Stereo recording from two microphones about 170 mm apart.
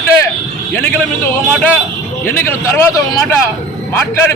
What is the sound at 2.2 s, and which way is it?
Speech, 10° left (ahead or behind).